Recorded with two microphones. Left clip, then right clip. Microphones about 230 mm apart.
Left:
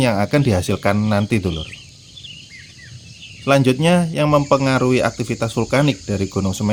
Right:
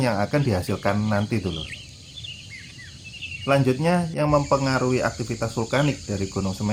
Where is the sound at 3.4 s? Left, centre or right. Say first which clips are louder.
Left 6 dB; left.